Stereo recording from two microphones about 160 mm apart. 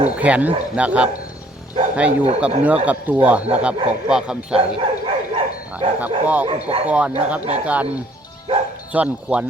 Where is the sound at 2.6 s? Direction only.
10° right (ahead or behind).